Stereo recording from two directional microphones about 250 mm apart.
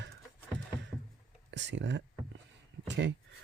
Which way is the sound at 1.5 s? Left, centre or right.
Right.